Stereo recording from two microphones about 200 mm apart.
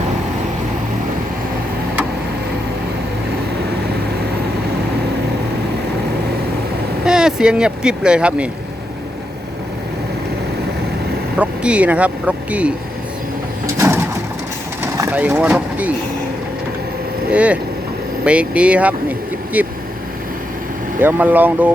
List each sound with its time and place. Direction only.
7.0 s speech: 5° right (ahead or behind)
11.3 s speech: 5° right (ahead or behind)
13.7 s bird: 15° right (ahead or behind)
14.9 s speech: 10° right (ahead or behind)
17.3 s speech: 5° right (ahead or behind)
21.0 s speech: 10° right (ahead or behind)